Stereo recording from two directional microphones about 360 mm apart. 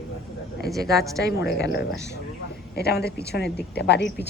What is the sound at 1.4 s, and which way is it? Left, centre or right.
Speech, left.